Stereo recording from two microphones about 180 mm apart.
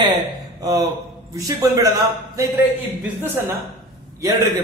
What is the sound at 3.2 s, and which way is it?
Speech, 15° right (ahead or behind).